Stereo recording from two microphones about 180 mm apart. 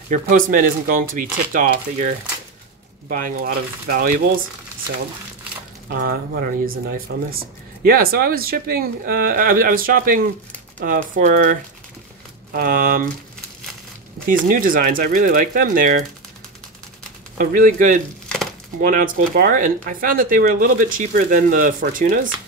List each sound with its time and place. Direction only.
0.1 s speech: 45° right (ahead or behind)
5.9 s speech: 50° right (ahead or behind)
12.5 s speech: 55° right (ahead or behind)
14.2 s speech: 50° right (ahead or behind)
17.4 s speech: 50° right (ahead or behind)